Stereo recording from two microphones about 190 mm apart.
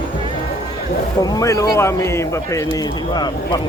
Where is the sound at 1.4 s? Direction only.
15° left (ahead or behind).